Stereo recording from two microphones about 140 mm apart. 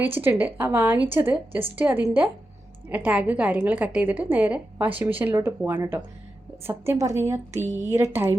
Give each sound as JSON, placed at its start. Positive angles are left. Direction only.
{"t": 0.0, "sound": "a woman's voice", "side_deg": -15}